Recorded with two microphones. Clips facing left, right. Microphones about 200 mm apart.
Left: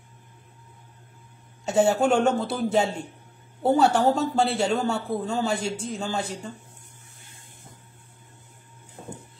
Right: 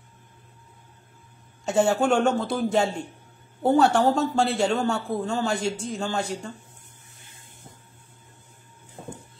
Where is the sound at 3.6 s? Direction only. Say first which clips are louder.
Right 1 dB; 5° left (ahead or behind).